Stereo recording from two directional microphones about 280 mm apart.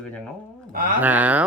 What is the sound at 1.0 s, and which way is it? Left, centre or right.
Speech, centre.